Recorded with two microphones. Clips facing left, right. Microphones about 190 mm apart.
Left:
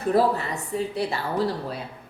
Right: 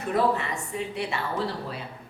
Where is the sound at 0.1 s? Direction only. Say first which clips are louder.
Left 3 dB; 35° left (ahead or behind).